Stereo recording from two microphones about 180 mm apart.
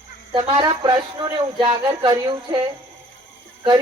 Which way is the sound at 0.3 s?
25° right (ahead or behind).